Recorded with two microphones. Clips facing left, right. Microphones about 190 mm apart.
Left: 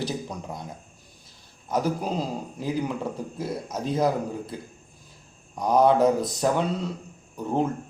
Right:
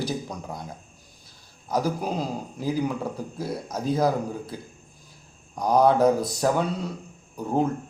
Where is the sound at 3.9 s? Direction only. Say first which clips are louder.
Right 1 dB; centre (ahead or behind).